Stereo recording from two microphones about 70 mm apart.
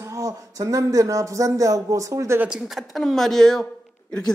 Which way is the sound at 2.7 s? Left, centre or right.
Centre.